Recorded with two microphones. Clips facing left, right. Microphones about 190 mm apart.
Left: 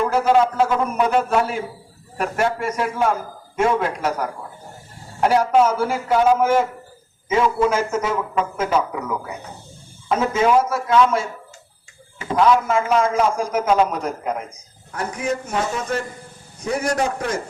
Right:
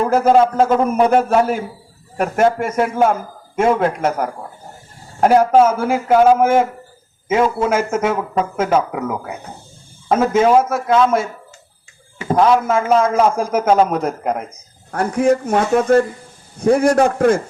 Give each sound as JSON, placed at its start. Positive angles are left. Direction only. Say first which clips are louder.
{"t": 0.0, "sound": "a man's voice", "louder": "right 4 dB", "side_deg": -45}
{"t": 10.1, "sound": "a man's voice", "louder": "right 5 dB", "side_deg": -45}
{"t": 12.3, "sound": "a man's voice", "louder": "right 3 dB", "side_deg": -45}